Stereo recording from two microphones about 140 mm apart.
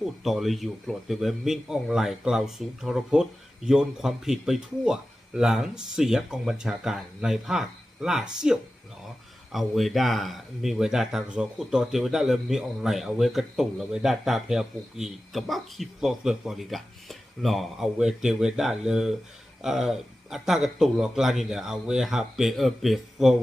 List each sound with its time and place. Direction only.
0.2 s speech: centre (ahead or behind)